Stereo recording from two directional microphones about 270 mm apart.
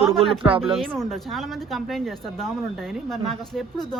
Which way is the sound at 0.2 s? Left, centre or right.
Centre.